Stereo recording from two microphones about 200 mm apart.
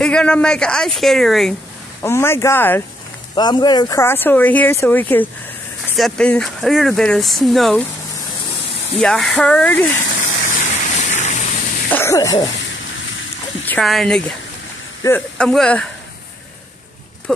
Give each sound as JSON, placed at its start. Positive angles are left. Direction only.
{"t": 0.0, "sound": "speech", "side_deg": 5}
{"t": 2.0, "sound": "speech", "side_deg": 15}
{"t": 3.3, "sound": "speech", "side_deg": 20}
{"t": 8.9, "sound": "speech", "side_deg": 0}
{"t": 10.3, "sound": "a sound", "side_deg": 35}
{"t": 11.9, "sound": "speech", "side_deg": 15}
{"t": 13.7, "sound": "speech", "side_deg": 0}